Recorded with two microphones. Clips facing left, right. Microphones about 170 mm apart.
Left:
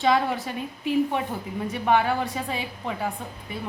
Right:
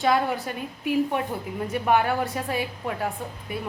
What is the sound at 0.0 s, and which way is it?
A woman's voice, centre (ahead or behind).